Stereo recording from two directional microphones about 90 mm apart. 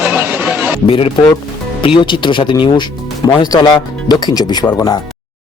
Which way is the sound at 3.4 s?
50° left (ahead or behind).